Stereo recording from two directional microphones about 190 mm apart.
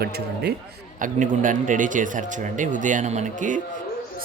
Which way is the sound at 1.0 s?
40° right (ahead or behind).